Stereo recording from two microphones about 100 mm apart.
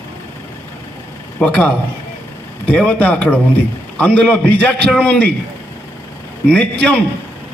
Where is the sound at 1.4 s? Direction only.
10° left (ahead or behind).